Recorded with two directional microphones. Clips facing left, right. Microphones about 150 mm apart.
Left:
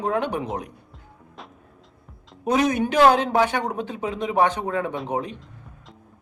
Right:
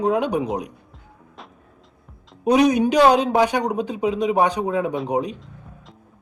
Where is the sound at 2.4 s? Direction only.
15° right (ahead or behind).